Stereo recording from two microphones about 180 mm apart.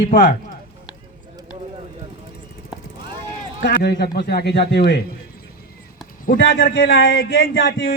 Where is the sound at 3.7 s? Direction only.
65° left (ahead or behind).